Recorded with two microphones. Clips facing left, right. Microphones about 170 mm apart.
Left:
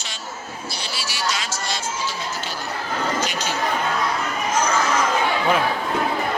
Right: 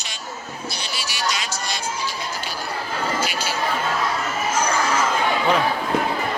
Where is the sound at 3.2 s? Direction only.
10° right (ahead or behind).